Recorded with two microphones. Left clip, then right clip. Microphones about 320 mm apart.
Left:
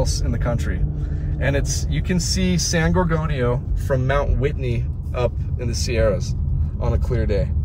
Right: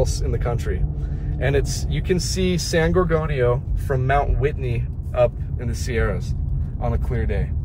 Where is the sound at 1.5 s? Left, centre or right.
Centre.